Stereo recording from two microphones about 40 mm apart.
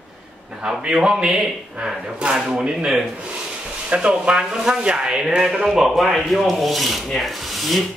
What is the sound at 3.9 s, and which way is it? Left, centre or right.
A man's voice, right.